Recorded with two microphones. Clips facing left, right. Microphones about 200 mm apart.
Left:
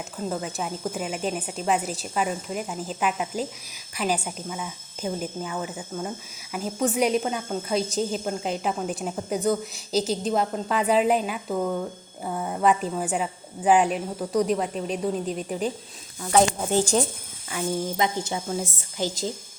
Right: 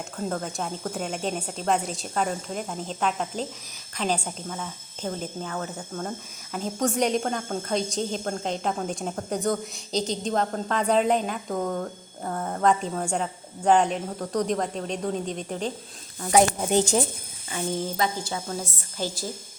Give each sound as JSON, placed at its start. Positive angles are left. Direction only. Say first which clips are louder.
{"t": 0.2, "sound": "a woman's voice", "louder": "even", "side_deg": 5}
{"t": 17.5, "sound": "a woman's voice", "louder": "left 1 dB", "side_deg": 10}
{"t": 17.9, "sound": "a woman's voice", "louder": "left 2 dB", "side_deg": 20}